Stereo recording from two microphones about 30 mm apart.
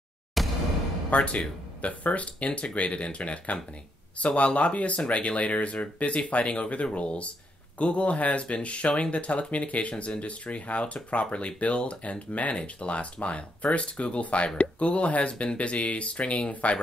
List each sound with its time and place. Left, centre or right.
0.4 s a sound: centre
1.1 s speech: left
12.5 s speech: left